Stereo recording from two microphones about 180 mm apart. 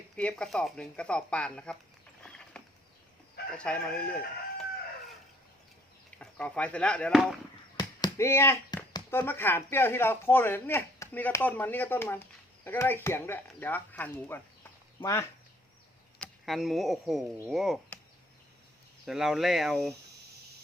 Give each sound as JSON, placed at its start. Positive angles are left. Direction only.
{"t": 0.2, "sound": "speech", "side_deg": 5}
{"t": 2.2, "sound": "a sound", "side_deg": 5}
{"t": 3.5, "sound": "speech", "side_deg": 5}
{"t": 6.1, "sound": "speech", "side_deg": 5}
{"t": 7.8, "sound": "a sound", "side_deg": 20}
{"t": 9.1, "sound": "speech", "side_deg": 10}
{"t": 16.1, "sound": "speech", "side_deg": 0}
{"t": 19.0, "sound": "speech", "side_deg": 0}